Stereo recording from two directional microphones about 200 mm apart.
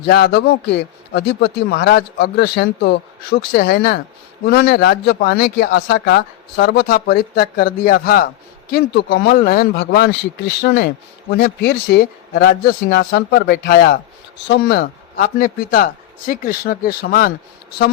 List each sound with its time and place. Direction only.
0.0 s speech: 55° left (ahead or behind)